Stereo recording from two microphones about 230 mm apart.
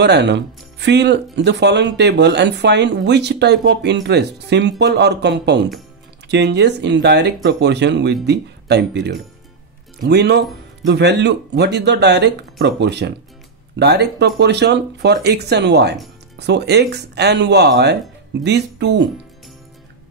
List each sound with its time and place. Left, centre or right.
0.0 s speech: right